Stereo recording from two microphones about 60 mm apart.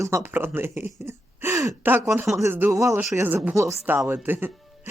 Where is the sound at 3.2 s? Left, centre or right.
Right.